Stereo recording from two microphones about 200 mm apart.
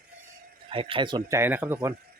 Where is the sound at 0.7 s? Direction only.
25° right (ahead or behind).